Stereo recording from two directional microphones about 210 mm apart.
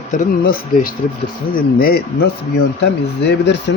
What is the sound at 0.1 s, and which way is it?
Speech, 45° left (ahead or behind).